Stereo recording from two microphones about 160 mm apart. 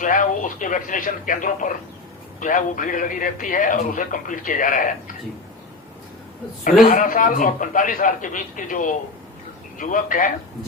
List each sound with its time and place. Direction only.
0.0 s a man's voice: 60° left (ahead or behind)
6.8 s a man's voice: 55° left (ahead or behind)